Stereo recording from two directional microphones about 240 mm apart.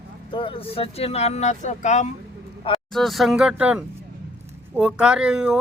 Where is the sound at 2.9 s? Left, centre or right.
Centre.